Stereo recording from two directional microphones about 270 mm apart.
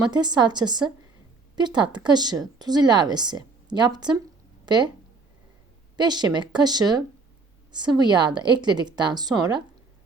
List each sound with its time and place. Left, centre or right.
0.0 s speech: centre
6.0 s speech: centre